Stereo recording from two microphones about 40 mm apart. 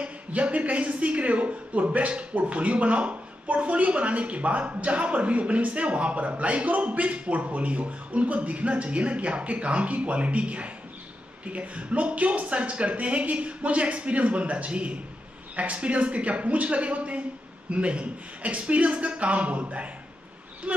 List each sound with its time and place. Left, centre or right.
0.0 s a woman's voice: right